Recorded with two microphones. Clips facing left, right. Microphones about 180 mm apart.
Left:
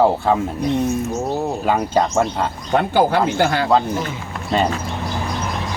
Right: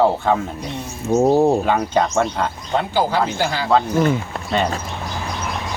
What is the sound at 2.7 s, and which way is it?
Speech, 55° left (ahead or behind).